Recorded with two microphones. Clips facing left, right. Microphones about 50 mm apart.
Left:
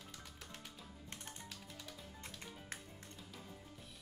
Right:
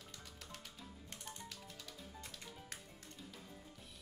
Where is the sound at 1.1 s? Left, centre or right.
Left.